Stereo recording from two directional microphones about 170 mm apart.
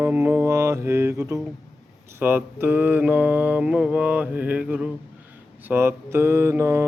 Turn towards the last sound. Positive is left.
turn(degrees=-15)  # may be behind; listen again after turning